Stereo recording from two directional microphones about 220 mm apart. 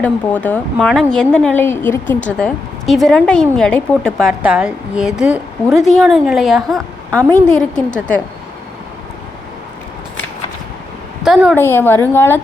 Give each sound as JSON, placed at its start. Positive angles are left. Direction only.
{"t": 0.0, "sound": "a woman's voice", "side_deg": 5}
{"t": 11.3, "sound": "a woman's voice", "side_deg": 0}
{"t": 11.5, "sound": "a woman's voice", "side_deg": 10}